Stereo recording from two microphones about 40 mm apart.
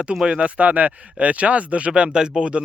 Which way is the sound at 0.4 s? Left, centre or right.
Right.